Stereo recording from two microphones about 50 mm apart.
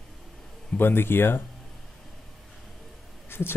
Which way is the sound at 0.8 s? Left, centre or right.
Left.